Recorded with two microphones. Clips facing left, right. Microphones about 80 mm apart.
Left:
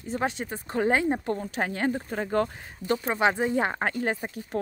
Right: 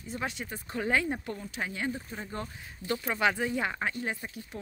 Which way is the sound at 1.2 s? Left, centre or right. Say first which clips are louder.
Left 8 dB; left.